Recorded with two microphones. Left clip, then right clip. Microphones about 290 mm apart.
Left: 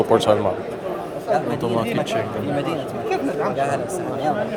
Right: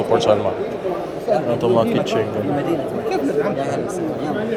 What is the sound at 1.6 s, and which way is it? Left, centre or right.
Speech, centre.